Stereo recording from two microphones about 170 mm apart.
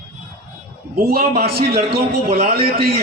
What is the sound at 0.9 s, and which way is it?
A man's voice, 65° right (ahead or behind).